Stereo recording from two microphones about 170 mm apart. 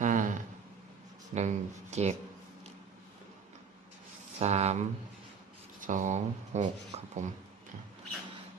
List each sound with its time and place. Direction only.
0.0 s a sound: 50° right (ahead or behind)
1.3 s speech: 40° right (ahead or behind)
4.4 s speech: 40° right (ahead or behind)